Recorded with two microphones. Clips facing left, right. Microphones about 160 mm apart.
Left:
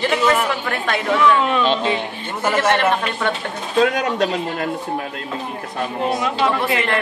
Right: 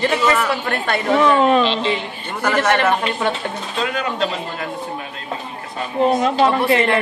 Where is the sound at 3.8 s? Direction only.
50° left (ahead or behind).